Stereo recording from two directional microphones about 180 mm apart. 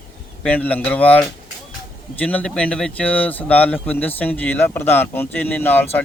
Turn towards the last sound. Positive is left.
turn(degrees=10)  # may be behind; listen again after turning